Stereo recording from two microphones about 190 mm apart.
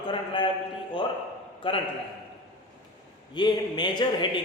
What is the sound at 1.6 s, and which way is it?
Speech, 30° left (ahead or behind).